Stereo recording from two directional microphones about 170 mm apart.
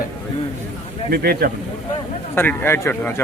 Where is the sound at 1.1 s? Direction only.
65° right (ahead or behind).